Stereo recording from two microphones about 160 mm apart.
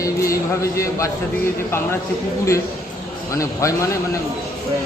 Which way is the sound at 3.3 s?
20° left (ahead or behind).